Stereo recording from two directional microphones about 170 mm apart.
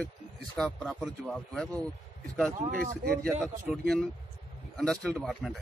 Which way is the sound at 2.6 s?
55° right (ahead or behind).